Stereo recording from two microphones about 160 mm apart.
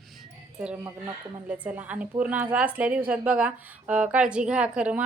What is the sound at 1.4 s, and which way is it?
A woman's voice, 10° right (ahead or behind).